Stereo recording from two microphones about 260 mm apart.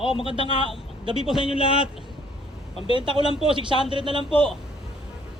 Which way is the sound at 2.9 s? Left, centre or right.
Centre.